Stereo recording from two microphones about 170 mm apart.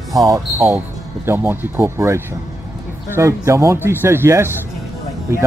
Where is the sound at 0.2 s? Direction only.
20° right (ahead or behind).